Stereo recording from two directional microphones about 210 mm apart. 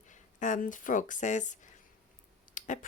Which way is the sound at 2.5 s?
35° left (ahead or behind).